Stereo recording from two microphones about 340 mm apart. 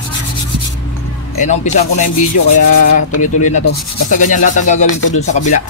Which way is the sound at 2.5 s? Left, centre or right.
Left.